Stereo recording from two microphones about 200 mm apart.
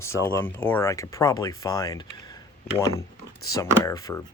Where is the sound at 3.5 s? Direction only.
15° left (ahead or behind).